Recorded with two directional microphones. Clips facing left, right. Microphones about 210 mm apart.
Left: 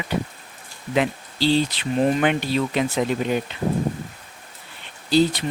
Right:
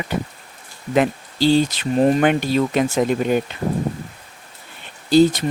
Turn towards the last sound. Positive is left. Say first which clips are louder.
# right 5 dB
turn(degrees=-50)  # may be behind; listen again after turning